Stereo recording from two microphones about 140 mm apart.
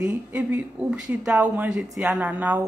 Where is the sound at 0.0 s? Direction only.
10° right (ahead or behind).